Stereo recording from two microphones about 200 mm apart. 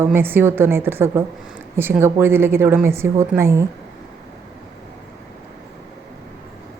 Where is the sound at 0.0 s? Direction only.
10° right (ahead or behind).